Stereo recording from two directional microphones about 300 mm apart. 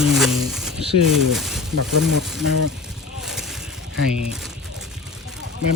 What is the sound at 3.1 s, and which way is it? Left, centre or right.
Vehicle, centre.